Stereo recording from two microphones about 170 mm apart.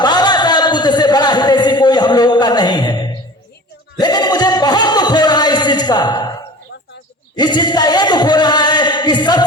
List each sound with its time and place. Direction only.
0.0 s a sound: 25° left (ahead or behind)
4.0 s music: 25° left (ahead or behind)
7.3 s chant: 25° left (ahead or behind)